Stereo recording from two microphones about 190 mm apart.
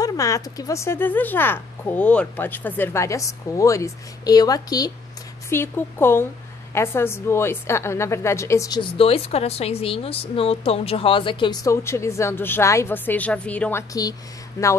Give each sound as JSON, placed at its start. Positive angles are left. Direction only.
{"t": 0.0, "sound": "a woman's voice", "side_deg": 15}